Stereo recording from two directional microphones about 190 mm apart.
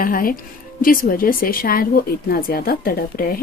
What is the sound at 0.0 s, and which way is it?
Speech, 50° left (ahead or behind).